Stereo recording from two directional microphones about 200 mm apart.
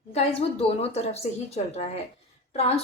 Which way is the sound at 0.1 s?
30° left (ahead or behind).